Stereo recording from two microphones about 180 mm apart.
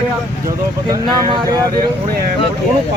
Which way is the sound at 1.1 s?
25° right (ahead or behind).